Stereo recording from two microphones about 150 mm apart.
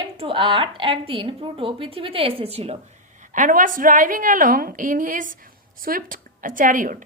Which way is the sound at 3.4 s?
60° right (ahead or behind).